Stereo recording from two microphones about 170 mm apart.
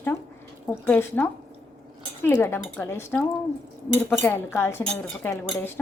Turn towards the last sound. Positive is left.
turn(degrees=15)  # may be behind; listen again after turning